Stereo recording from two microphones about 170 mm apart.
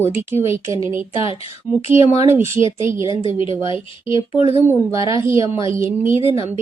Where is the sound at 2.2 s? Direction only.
15° right (ahead or behind).